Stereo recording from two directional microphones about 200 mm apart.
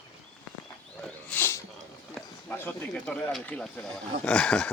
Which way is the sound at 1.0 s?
5° left (ahead or behind).